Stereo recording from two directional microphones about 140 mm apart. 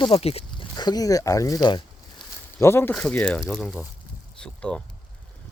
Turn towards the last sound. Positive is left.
turn(degrees=5)  # may be behind; listen again after turning